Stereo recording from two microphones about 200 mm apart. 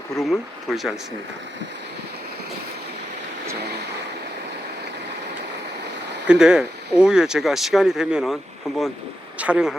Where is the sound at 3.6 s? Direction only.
55° right (ahead or behind).